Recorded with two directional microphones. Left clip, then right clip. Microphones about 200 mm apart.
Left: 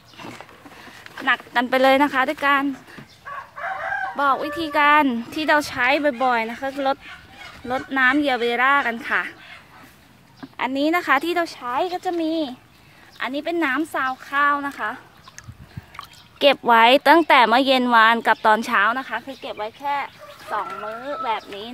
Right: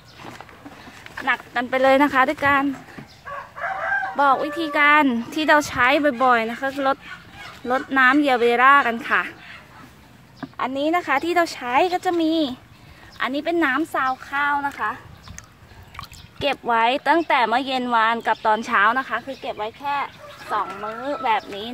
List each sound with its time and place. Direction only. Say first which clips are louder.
1.2 s speech: left 2 dB; 55° left (ahead or behind)
2.0 s speech: right 2 dB; 5° left (ahead or behind)
3.3 s chicken: right 1 dB; 45° left (ahead or behind)
4.2 s a woman's voice: right 2 dB; 10° left (ahead or behind)
10.6 s speech: left 1 dB; 35° left (ahead or behind)
11.6 s speech: right 4 dB; 20° right (ahead or behind)
13.2 s a woman's voice: right 2 dB; centre (ahead or behind)
13.9 s speech: even; 25° left (ahead or behind)
16.3 s speech: left 6 dB; 40° left (ahead or behind)
18.7 s speech: right 1 dB; 15° left (ahead or behind)
20.8 s speech: right 2 dB; 10° right (ahead or behind)